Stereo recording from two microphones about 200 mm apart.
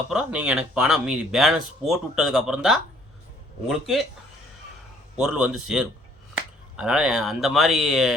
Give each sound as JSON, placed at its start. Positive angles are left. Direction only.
{"t": 0.1, "sound": "speech", "side_deg": -5}
{"t": 5.1, "sound": "speech", "side_deg": -5}